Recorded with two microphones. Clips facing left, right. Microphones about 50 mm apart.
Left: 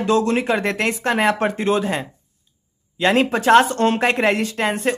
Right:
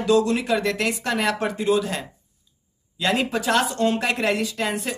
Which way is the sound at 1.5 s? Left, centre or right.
Left.